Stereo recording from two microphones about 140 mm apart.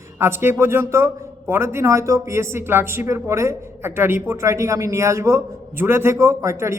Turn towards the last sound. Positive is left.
turn(degrees=-20)  # may be behind; listen again after turning